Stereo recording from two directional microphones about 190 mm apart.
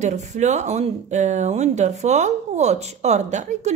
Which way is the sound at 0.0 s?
35° right (ahead or behind).